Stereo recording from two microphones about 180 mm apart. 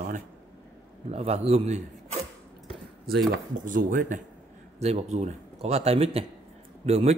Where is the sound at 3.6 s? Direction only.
50° right (ahead or behind).